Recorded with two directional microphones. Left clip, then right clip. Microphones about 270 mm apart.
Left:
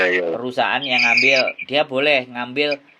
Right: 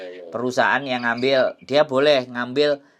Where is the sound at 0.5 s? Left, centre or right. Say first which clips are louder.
Left 1 dB; right.